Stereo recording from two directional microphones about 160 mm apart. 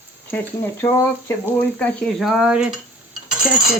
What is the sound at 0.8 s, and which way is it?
Speech, 15° left (ahead or behind).